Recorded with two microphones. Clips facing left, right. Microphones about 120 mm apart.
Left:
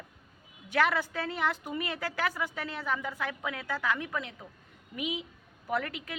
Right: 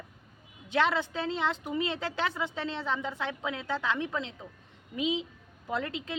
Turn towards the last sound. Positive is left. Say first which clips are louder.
# even
turn(degrees=-25)  # may be behind; listen again after turning